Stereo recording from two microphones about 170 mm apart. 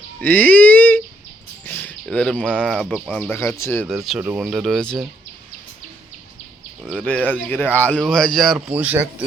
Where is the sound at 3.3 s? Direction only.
15° left (ahead or behind).